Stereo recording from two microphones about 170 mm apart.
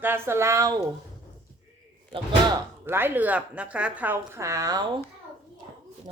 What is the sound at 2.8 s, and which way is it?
A woman's voice, 10° right (ahead or behind).